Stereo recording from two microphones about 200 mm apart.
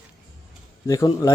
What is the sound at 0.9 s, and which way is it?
Speech, 15° left (ahead or behind).